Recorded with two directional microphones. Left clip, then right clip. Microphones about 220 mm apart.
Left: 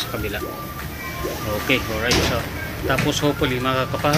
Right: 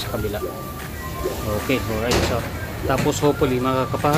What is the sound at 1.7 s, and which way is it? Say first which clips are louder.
Speech: left 3 dB; 10° right (ahead or behind).